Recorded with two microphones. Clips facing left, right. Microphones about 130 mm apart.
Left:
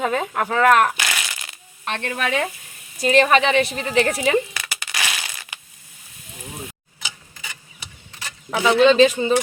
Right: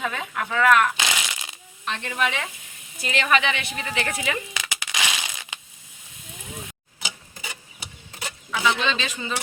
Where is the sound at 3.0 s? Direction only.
35° left (ahead or behind).